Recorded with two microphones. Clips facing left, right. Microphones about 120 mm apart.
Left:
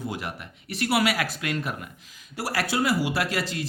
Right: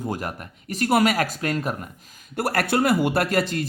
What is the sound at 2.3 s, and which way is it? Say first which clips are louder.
Speech: right 5 dB; 55° right (ahead or behind).